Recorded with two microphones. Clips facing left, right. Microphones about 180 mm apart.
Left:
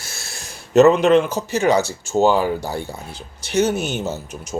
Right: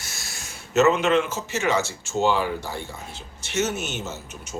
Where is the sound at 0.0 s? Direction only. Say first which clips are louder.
Left 3 dB; 30° left (ahead or behind).